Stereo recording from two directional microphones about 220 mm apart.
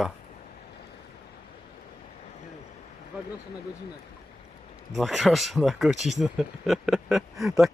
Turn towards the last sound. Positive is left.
turn(degrees=0)  # may be behind; listen again after turning